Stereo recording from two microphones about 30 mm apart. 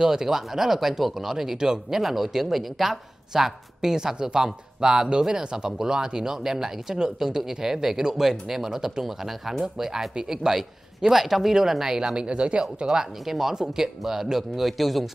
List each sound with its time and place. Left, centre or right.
0.0 s speech: centre
2.0 s speech: centre; by 12.8 s right
13.2 s speech: centre